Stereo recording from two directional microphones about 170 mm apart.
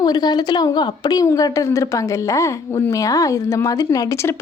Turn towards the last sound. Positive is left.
turn(degrees=20)  # may be behind; listen again after turning